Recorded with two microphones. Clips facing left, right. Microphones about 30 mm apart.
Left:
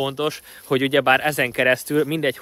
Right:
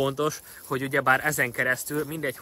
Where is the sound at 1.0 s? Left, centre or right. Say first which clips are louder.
Left 5 dB; left.